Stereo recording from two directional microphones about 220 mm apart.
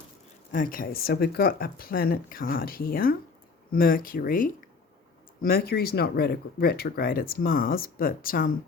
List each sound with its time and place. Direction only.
0.5 s speech: 40° left (ahead or behind)